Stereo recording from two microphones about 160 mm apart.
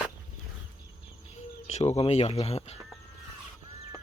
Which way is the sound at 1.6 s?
40° left (ahead or behind).